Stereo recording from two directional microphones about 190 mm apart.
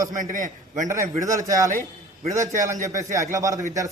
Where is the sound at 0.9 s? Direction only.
15° right (ahead or behind).